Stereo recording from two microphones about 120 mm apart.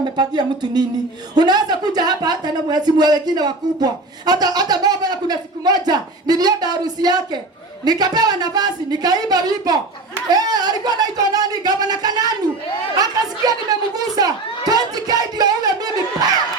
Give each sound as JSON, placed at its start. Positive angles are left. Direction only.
{"t": 0.0, "sound": "speech", "side_deg": -35}
{"t": 13.0, "sound": "chatter", "side_deg": -35}